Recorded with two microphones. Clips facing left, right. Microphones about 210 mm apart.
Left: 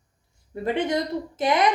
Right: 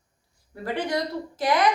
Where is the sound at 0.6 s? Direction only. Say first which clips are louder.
Left 3 dB; 20° left (ahead or behind).